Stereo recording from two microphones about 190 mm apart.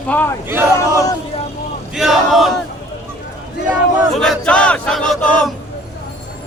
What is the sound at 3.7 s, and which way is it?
Battle cry, 5° right (ahead or behind).